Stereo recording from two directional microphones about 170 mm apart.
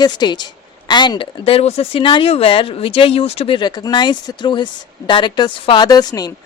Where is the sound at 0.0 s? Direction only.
25° left (ahead or behind).